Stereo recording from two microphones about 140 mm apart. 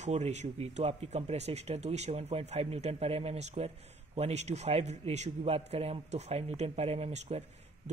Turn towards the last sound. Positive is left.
turn(degrees=-50)  # may be behind; listen again after turning